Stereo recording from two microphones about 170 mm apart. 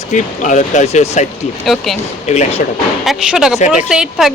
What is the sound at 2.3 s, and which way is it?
Speech, 40° left (ahead or behind).